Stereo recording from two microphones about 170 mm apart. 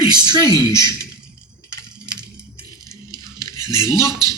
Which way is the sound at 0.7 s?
20° left (ahead or behind).